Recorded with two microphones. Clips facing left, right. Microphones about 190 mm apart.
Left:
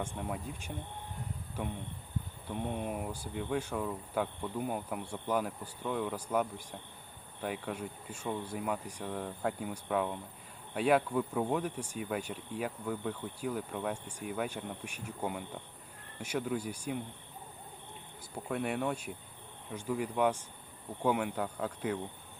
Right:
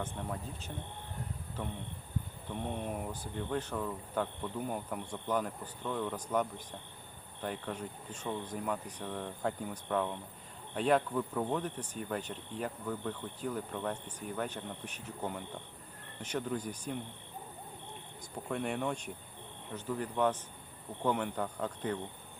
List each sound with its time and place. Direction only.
0.0 s speech: 10° left (ahead or behind)
18.4 s speech: 5° left (ahead or behind)